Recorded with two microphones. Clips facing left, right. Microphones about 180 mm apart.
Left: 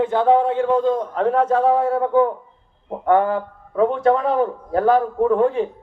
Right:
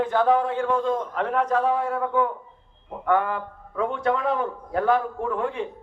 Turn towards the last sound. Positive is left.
turn(degrees=35)  # may be behind; listen again after turning